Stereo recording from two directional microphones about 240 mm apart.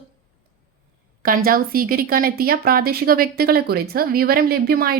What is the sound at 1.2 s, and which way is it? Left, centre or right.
Speech, right.